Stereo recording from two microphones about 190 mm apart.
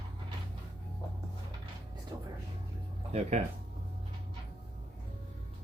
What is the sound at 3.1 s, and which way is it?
Speech, 35° right (ahead or behind).